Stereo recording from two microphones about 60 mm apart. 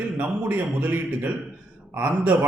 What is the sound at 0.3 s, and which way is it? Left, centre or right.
A man's voice, right.